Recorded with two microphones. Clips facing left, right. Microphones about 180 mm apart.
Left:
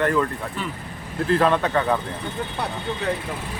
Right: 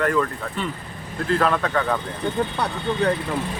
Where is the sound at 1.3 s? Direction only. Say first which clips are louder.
Left 2 dB; 25° left (ahead or behind).